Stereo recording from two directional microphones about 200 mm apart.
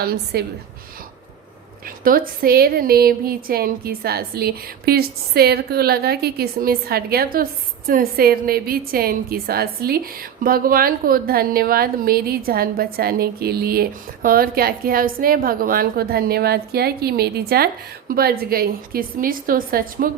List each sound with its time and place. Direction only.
0.0 s a woman's voice: 50° right (ahead or behind)
2.0 s a woman's voice: 45° right (ahead or behind)